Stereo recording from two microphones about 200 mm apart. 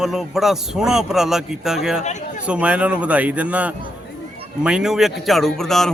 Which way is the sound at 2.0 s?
35° left (ahead or behind).